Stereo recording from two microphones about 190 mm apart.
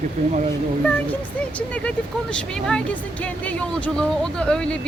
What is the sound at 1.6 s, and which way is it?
Speech, 5° left (ahead or behind).